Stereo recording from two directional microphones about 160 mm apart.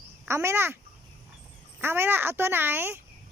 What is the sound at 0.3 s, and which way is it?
Speech, 15° right (ahead or behind).